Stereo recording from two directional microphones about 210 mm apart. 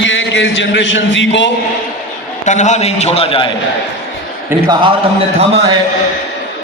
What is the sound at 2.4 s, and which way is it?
A man's voice, 35° left (ahead or behind).